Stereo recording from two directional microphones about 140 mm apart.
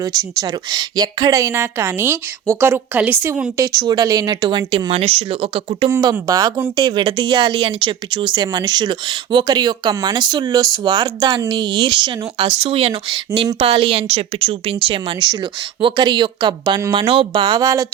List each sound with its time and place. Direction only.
0.0 s a woman's voice: 25° right (ahead or behind); by 5.9 s 40° right (ahead or behind)
6.0 s a woman's voice: 25° right (ahead or behind)